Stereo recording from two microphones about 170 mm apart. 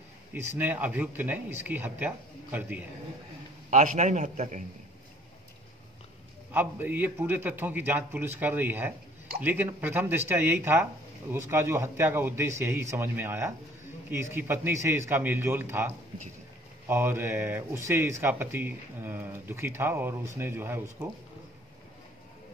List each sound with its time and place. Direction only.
0.3 s speech: 10° right (ahead or behind)
3.7 s a man's voice: 45° right (ahead or behind)
6.5 s speech: 10° right (ahead or behind)